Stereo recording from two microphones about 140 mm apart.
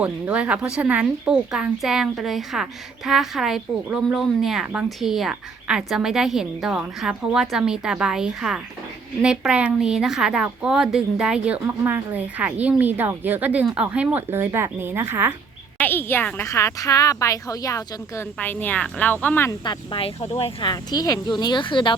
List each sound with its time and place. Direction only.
0.0 s a woman's voice: 10° right (ahead or behind)
15.8 s a woman's voice: 15° left (ahead or behind)
18.3 s speech: 10° left (ahead or behind)
19.5 s speech: 35° left (ahead or behind)
20.6 s speech: 30° left (ahead or behind)